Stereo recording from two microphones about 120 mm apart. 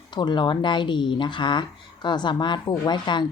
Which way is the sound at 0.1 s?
40° left (ahead or behind).